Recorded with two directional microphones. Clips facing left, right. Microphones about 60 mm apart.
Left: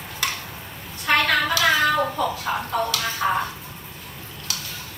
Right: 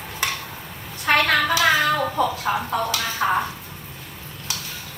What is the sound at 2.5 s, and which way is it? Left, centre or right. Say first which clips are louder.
Speech: right 1 dB; right.